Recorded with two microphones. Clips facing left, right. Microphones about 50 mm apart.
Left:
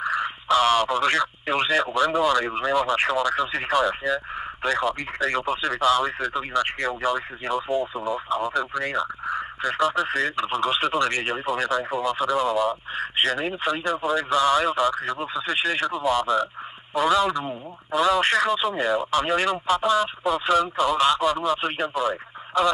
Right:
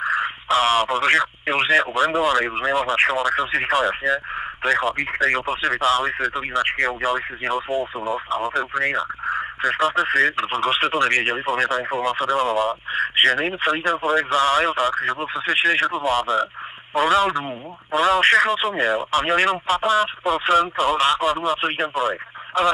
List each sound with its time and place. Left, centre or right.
0.1 s speech: right
8.3 s speech: right